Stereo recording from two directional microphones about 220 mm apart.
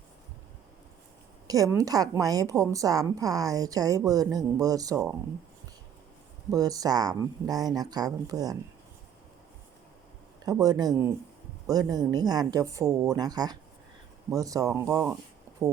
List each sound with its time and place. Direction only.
1.5 s a woman's voice: 15° right (ahead or behind)
6.5 s a woman's voice: 15° right (ahead or behind)
10.4 s a woman's voice: 15° right (ahead or behind)
15.5 s a sound: 15° right (ahead or behind)